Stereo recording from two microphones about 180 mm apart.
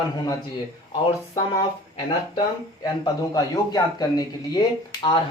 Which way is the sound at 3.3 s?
20° left (ahead or behind).